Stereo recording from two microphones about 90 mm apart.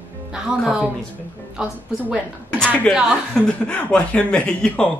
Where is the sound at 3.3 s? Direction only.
10° left (ahead or behind).